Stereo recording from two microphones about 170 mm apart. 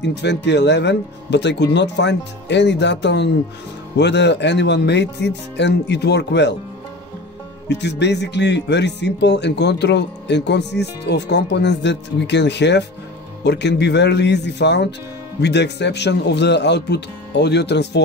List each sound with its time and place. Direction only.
0.0 s speech: 85° left
7.6 s speech: 90° left